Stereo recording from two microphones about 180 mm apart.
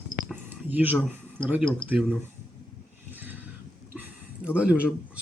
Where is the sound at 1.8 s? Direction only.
25° left (ahead or behind).